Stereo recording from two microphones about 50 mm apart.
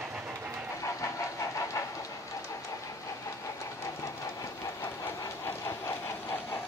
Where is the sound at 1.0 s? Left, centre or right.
Left.